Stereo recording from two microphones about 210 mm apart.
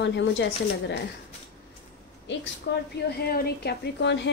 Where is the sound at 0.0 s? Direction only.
55° left (ahead or behind).